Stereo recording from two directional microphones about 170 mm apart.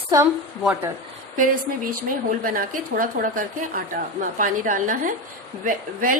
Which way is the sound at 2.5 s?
55° right (ahead or behind).